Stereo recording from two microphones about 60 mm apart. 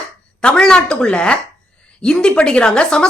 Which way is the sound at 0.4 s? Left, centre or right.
Centre.